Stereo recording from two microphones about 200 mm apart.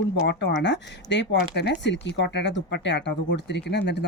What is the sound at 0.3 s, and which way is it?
Speech, 60° left (ahead or behind).